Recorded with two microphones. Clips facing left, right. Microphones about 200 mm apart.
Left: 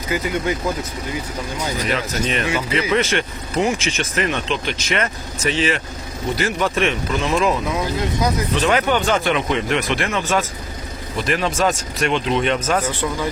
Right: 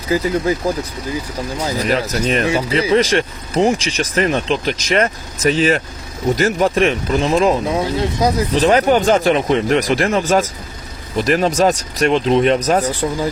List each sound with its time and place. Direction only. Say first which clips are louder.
0.1 s speech: right 5 dB; 35° right (ahead or behind)
1.6 s speech: right 5 dB; 35° right (ahead or behind)